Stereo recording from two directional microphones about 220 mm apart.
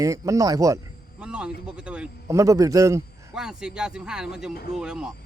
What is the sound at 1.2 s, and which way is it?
A man's voice, 5° right (ahead or behind).